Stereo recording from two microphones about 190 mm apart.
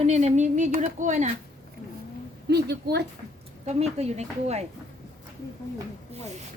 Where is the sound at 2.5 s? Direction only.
60° right (ahead or behind).